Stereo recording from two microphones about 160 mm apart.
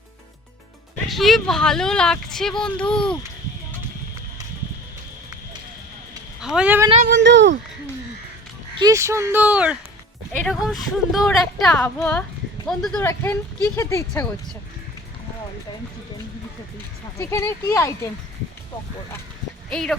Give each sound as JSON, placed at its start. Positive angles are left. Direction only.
{"t": 1.0, "sound": "speech", "side_deg": 0}
{"t": 6.4, "sound": "speech", "side_deg": -5}
{"t": 7.1, "sound": "speech", "side_deg": -90}
{"t": 8.8, "sound": "speech", "side_deg": -20}
{"t": 13.0, "sound": "speech", "side_deg": 15}
{"t": 17.2, "sound": "speech", "side_deg": 20}
{"t": 19.7, "sound": "speech", "side_deg": 5}